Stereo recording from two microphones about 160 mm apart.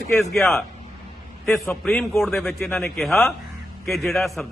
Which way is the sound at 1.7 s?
5° left (ahead or behind).